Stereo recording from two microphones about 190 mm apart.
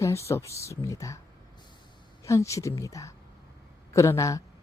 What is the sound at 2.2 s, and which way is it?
Speech, 15° left (ahead or behind).